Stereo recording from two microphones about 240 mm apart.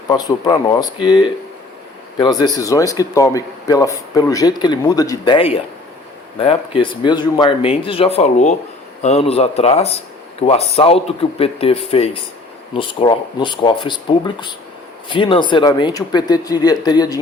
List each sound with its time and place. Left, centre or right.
0.1 s speech: centre
2.1 s speech: centre